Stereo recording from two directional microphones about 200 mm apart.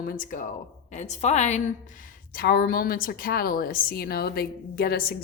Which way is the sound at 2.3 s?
50° left (ahead or behind).